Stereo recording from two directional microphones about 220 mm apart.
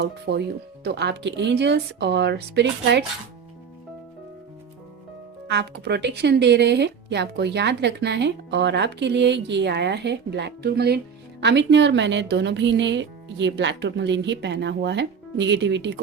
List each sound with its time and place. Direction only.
0.0 s speech: 50° right (ahead or behind)
5.5 s speech: 50° right (ahead or behind)